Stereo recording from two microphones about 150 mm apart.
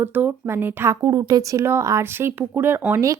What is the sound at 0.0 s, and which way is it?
Speech, 15° right (ahead or behind).